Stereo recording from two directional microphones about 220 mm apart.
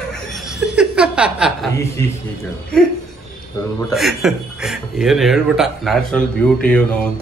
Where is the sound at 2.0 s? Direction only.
15° left (ahead or behind).